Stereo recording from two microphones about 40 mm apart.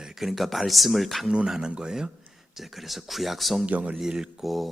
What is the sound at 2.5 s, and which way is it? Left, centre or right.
Speech, centre.